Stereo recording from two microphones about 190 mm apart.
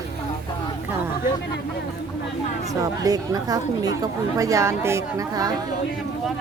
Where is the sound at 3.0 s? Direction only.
20° right (ahead or behind).